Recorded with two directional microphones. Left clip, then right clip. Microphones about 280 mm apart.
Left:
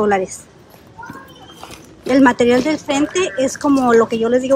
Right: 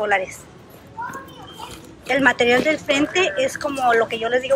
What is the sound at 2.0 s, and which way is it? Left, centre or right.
Speech, centre.